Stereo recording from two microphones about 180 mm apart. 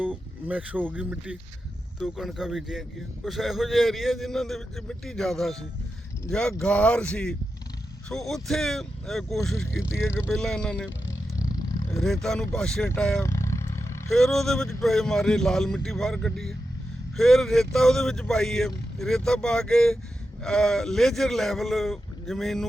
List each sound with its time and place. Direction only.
0.0 s speech: 10° right (ahead or behind)
9.6 s speech: 15° left (ahead or behind)
10.3 s speech: 5° left (ahead or behind)
11.3 s roaring cats: 20° left (ahead or behind)
11.9 s speech: centre (ahead or behind)
13.2 s roar: 15° left (ahead or behind)
14.1 s speech: centre (ahead or behind)